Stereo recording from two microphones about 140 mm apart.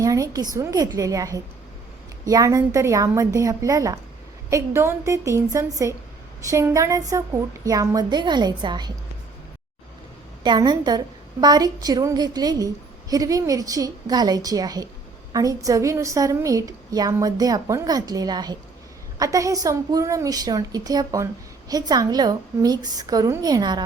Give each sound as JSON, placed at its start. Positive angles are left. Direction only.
{"t": 0.0, "sound": "a sound", "side_deg": -25}
{"t": 0.5, "sound": "a woman's voice", "side_deg": -25}
{"t": 10.4, "sound": "a woman's voice", "side_deg": -30}